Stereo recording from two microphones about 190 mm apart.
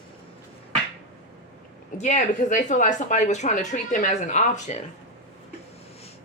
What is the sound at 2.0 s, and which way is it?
A woman's voice, 40° left (ahead or behind).